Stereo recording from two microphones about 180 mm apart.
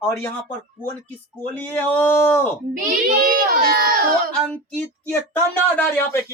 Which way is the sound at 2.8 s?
50° right (ahead or behind).